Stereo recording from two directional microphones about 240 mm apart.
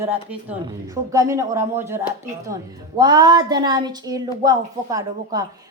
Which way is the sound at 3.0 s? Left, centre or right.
Centre.